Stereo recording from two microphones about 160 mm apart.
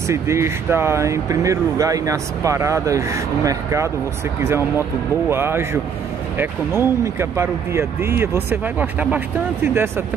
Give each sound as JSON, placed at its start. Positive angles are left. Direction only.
{"t": 0.1, "sound": "speech", "side_deg": -15}